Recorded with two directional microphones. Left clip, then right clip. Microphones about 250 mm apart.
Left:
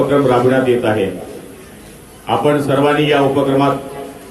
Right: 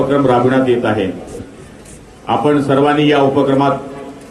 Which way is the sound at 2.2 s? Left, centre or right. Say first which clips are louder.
Right 1 dB; right.